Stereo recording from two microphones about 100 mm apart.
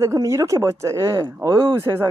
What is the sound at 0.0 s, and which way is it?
Speech, 30° right (ahead or behind).